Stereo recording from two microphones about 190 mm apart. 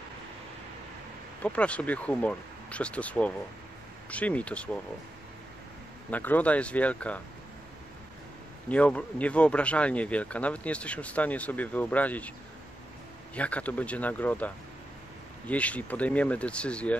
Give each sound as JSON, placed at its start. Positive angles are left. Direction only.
{"t": 1.4, "sound": "speech", "side_deg": 5}
{"t": 6.0, "sound": "speech", "side_deg": 10}
{"t": 8.6, "sound": "speech", "side_deg": 5}
{"t": 13.3, "sound": "speech", "side_deg": 5}